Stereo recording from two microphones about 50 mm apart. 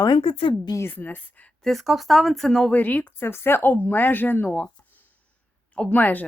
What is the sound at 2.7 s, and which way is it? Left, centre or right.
Speech, left.